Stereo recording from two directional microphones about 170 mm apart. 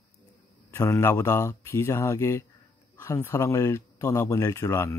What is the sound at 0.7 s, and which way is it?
Speech, 15° left (ahead or behind).